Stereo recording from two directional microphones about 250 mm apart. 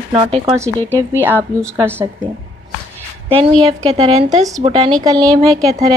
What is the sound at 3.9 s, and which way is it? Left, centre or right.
A woman's voice, right.